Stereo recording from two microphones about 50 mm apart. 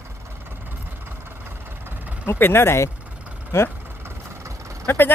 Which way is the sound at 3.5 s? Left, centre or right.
Left.